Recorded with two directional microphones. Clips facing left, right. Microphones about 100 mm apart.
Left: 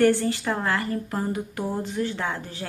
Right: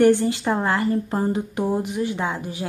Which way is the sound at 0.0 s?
20° right (ahead or behind).